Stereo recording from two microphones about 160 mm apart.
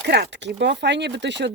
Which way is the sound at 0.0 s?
90° right.